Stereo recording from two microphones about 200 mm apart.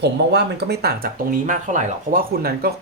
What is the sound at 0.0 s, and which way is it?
Speech, 55° right (ahead or behind).